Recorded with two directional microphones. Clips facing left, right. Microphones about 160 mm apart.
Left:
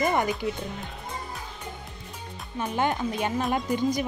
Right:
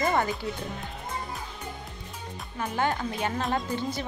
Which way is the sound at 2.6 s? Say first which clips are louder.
Left 2 dB; 20° left (ahead or behind).